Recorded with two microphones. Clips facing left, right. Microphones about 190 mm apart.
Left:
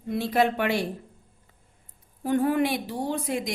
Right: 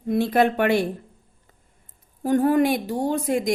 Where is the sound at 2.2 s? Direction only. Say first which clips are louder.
Right 5 dB; 40° right (ahead or behind).